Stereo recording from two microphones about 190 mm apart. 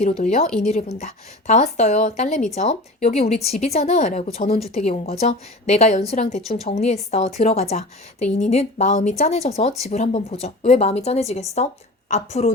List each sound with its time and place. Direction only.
0.0 s a woman's voice: 35° left (ahead or behind)